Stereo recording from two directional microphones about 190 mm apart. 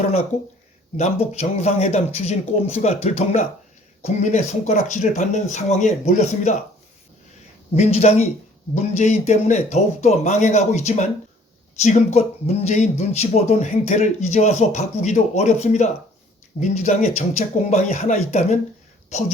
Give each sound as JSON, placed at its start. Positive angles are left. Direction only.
{"t": 0.9, "sound": "speech", "side_deg": 35}
{"t": 7.8, "sound": "speech", "side_deg": 35}